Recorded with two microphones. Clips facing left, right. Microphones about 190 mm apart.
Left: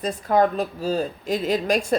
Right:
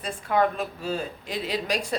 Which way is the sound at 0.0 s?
40° left (ahead or behind).